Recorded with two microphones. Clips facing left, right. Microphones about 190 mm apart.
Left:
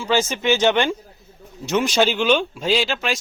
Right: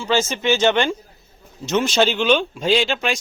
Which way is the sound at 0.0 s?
10° left (ahead or behind).